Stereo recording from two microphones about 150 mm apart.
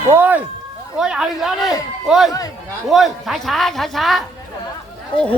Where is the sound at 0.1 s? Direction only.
10° right (ahead or behind).